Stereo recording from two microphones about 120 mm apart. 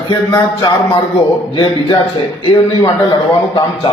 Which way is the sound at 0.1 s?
35° left (ahead or behind).